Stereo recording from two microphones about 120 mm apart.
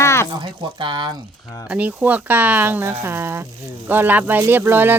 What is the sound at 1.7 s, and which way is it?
Speech, 10° right (ahead or behind).